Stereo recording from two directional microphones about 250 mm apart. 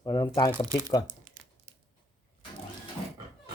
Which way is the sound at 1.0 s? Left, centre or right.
Right.